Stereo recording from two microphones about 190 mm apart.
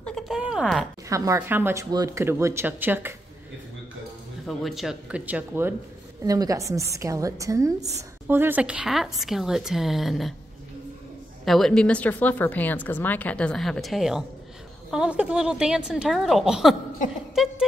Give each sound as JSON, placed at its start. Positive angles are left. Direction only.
{"t": 0.0, "sound": "a sound", "side_deg": 0}
{"t": 1.0, "sound": "speech", "side_deg": -15}
{"t": 4.5, "sound": "a woman's voice", "side_deg": 0}
{"t": 11.4, "sound": "a woman's voice", "side_deg": 0}